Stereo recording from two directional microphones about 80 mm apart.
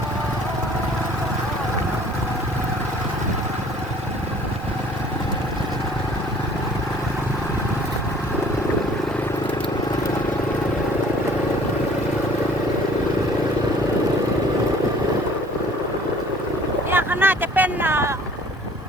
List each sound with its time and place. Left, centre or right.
16.9 s vehicle: right